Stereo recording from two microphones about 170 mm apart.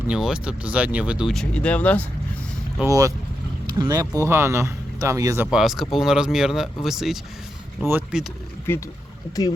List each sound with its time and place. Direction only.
0.1 s speech: 5° right (ahead or behind)
2.8 s speech: 20° right (ahead or behind)
5.5 s speech: centre (ahead or behind)
8.7 s speech: 15° left (ahead or behind)